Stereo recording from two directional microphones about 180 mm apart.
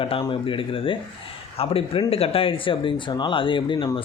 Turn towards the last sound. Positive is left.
turn(degrees=25)  # may be behind; listen again after turning